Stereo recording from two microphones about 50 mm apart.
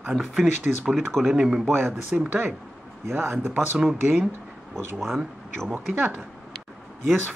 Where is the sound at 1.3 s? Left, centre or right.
Centre.